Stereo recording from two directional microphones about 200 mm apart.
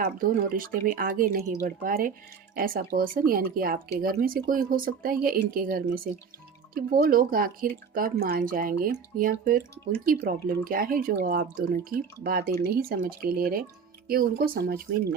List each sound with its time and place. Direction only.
0.0 s speech: 45° right (ahead or behind)